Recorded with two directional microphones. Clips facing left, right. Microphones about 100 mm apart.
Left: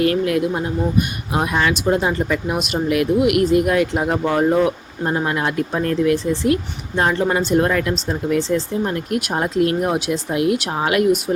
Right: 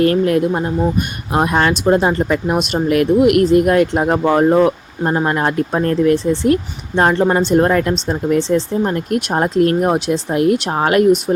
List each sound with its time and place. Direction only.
0.0 s speech: 40° right (ahead or behind)